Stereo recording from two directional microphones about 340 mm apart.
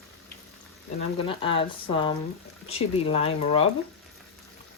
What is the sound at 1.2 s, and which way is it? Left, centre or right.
Speech, centre.